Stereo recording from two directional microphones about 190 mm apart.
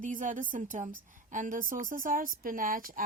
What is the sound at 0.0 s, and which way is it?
A woman's voice, 45° right (ahead or behind).